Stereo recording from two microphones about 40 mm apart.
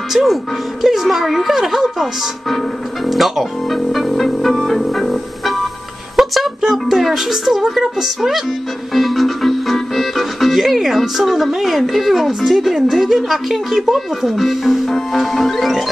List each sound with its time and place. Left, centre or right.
0.1 s speech: centre
3.1 s speech: centre
8.9 s music: centre
10.5 s speech: centre
14.2 s speech: centre
14.9 s music: centre